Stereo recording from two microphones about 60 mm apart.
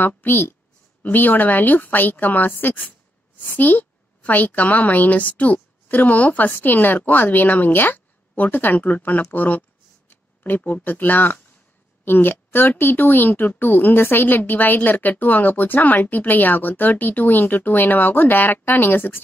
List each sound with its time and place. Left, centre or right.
0.0 s a woman's voice: left